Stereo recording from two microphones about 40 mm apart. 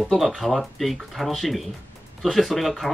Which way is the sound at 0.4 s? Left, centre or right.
Centre.